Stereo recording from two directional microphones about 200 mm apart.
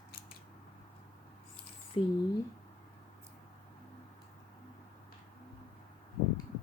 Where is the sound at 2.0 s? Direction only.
30° left (ahead or behind).